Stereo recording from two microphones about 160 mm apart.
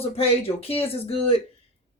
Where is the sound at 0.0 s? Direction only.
35° left (ahead or behind).